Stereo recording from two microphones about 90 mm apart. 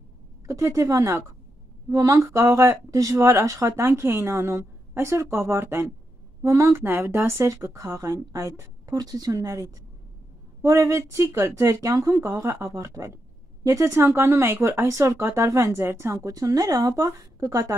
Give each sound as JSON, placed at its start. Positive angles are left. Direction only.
{"t": 0.5, "sound": "speech", "side_deg": -35}
{"t": 6.8, "sound": "speech", "side_deg": -25}